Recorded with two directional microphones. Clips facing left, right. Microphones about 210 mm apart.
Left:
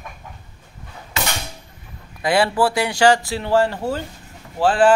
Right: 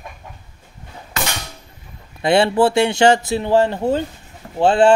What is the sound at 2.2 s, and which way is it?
Speech, 25° right (ahead or behind).